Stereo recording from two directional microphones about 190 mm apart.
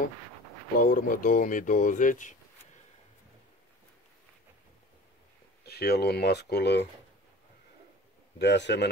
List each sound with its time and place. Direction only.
0.7 s speech: 45° left (ahead or behind)
5.7 s speech: 55° left (ahead or behind)
8.4 s speech: 65° left (ahead or behind)